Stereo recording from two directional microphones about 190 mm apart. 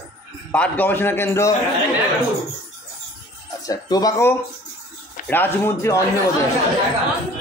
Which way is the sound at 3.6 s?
20° left (ahead or behind).